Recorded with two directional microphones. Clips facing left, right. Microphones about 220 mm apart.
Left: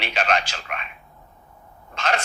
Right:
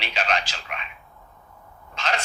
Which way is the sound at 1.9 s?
55° left (ahead or behind).